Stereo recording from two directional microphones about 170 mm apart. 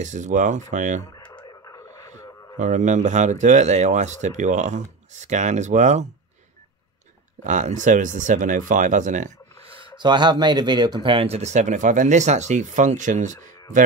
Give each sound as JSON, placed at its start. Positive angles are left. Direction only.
{"t": 0.0, "sound": "speech", "side_deg": -45}
{"t": 1.3, "sound": "frog", "side_deg": 20}
{"t": 2.0, "sound": "speech", "side_deg": -45}
{"t": 7.4, "sound": "speech", "side_deg": -45}
{"t": 9.9, "sound": "speech", "side_deg": -25}